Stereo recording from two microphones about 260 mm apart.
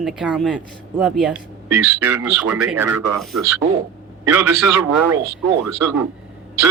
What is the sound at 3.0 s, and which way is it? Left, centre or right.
Speech, right.